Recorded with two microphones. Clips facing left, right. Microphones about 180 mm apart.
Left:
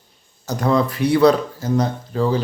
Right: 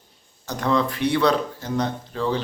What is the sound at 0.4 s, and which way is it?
A man's voice, 40° left (ahead or behind).